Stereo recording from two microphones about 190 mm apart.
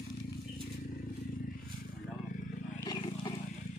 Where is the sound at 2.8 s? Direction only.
20° left (ahead or behind).